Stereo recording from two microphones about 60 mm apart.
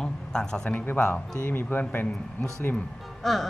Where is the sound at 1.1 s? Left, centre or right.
Left.